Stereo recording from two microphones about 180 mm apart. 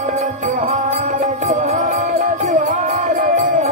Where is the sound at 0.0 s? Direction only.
40° right (ahead or behind).